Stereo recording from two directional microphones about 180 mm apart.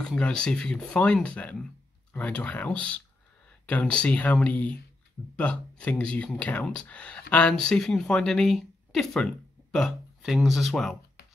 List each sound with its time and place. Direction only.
0.0 s speech: 5° left (ahead or behind)